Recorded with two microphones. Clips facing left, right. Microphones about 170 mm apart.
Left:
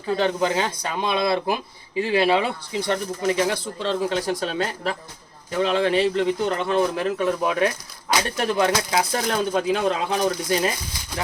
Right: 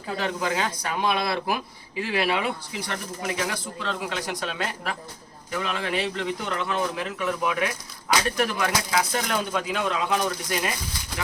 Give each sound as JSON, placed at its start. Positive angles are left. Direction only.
{"t": 0.2, "sound": "speech", "side_deg": 25}